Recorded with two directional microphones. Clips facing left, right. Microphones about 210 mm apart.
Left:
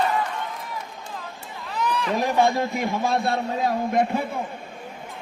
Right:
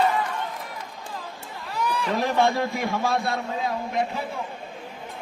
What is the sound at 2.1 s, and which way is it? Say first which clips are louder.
A man's voice: left 1 dB; 15° left (ahead or behind).